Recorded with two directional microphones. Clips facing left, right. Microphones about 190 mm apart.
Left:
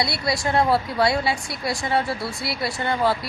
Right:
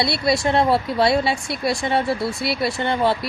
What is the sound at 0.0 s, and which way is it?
Speech, 25° right (ahead or behind).